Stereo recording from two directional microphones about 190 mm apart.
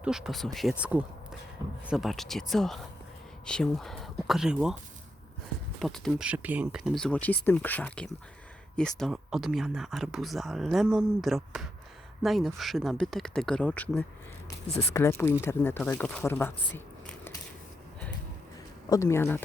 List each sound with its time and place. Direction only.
0.0 s speech: centre (ahead or behind)
5.8 s speech: centre (ahead or behind)
18.9 s speech: 15° left (ahead or behind)